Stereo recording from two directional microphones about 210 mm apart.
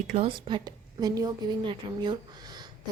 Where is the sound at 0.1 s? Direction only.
25° right (ahead or behind).